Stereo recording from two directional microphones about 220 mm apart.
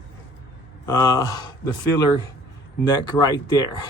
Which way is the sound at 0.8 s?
15° left (ahead or behind).